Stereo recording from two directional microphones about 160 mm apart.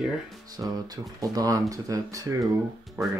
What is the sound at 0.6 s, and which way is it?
Speech, 25° right (ahead or behind).